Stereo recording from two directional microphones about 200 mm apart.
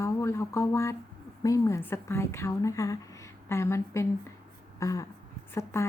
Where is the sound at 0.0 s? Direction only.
15° left (ahead or behind).